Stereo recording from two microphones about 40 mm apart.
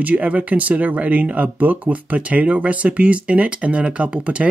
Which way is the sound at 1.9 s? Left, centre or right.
Right.